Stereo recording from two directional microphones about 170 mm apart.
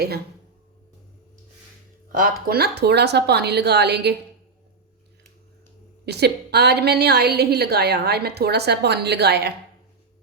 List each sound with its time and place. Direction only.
2.1 s a woman's voice: 60° right (ahead or behind); by 4.1 s 80° right
6.1 s a woman's voice: 75° right (ahead or behind)